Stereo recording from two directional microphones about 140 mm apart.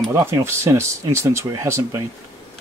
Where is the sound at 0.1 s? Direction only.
20° right (ahead or behind).